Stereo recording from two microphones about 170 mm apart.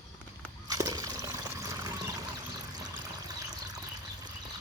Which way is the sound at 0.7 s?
20° right (ahead or behind).